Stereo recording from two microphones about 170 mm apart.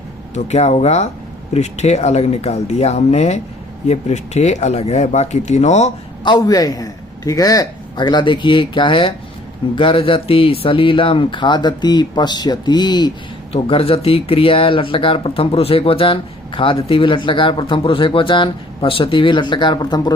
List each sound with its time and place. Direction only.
0.3 s speech: 40° left (ahead or behind)
6.2 s a man's voice: 25° left (ahead or behind)